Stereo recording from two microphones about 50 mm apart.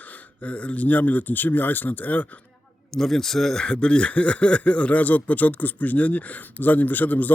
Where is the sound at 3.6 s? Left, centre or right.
Centre.